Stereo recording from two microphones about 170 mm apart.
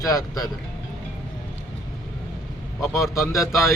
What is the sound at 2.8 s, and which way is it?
Speech, 15° left (ahead or behind).